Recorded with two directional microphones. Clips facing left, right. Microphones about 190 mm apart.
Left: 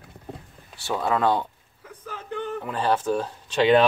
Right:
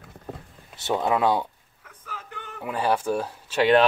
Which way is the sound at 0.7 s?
20° right (ahead or behind).